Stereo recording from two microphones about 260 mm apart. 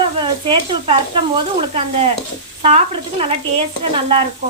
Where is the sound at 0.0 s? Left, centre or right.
Centre.